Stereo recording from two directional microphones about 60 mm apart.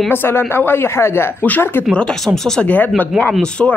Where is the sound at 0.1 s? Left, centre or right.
Left.